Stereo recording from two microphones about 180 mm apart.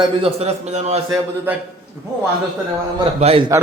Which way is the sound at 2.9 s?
30° right (ahead or behind).